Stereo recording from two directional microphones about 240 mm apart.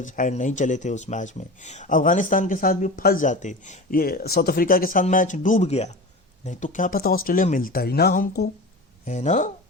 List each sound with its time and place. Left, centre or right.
0.0 s speech: left